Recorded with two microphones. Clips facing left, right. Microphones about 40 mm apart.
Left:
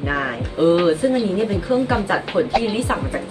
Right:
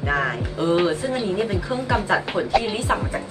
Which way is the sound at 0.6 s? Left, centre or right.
Left.